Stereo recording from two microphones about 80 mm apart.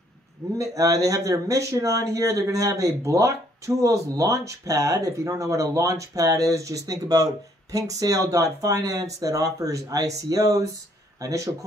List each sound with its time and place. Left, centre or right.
0.6 s speech: right